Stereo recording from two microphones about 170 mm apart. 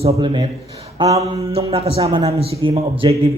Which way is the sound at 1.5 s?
35° right (ahead or behind).